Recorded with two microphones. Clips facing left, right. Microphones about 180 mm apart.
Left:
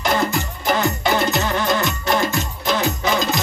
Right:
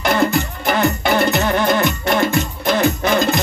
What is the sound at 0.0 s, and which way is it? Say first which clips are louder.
Music: right 4 dB; 60° right (ahead or behind).